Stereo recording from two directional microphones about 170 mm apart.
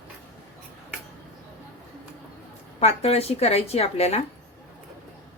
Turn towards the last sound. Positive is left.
turn(degrees=40)  # may be behind; listen again after turning